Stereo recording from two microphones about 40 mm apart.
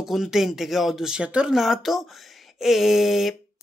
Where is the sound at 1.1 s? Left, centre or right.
Right.